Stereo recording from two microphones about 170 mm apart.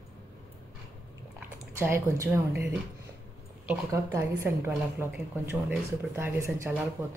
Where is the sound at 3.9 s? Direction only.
15° right (ahead or behind).